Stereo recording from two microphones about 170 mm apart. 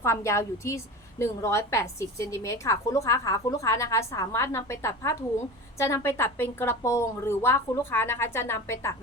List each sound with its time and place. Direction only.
0.0 s a woman's voice: 15° left (ahead or behind)